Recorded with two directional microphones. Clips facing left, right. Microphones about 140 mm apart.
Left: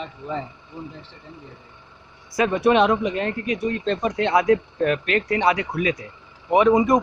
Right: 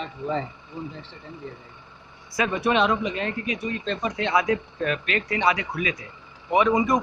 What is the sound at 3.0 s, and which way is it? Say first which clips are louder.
Speech: left 3 dB; 50° left (ahead or behind).